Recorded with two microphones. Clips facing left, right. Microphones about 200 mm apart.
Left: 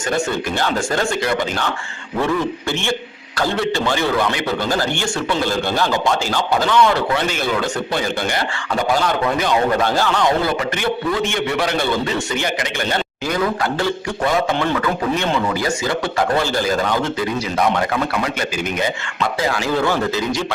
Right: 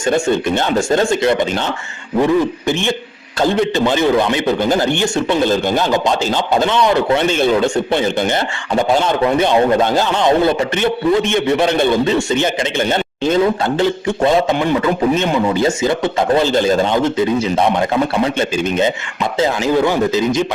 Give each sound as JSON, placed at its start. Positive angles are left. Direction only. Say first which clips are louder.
{"t": 0.0, "sound": "a man's voice", "louder": "right 6 dB", "side_deg": -25}